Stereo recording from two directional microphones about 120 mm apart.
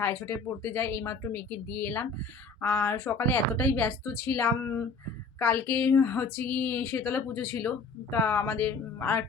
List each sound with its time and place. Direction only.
0.0 s a woman's voice: 20° left (ahead or behind)